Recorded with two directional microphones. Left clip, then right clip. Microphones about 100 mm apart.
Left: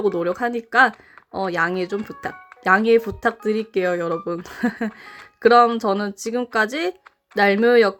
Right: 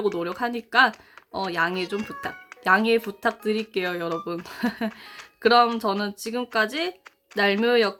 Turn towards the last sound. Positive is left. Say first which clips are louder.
# left 5 dB
turn(degrees=45)  # may be behind; listen again after turning